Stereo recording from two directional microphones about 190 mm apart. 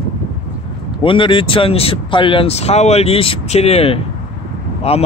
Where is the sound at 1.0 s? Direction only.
25° left (ahead or behind).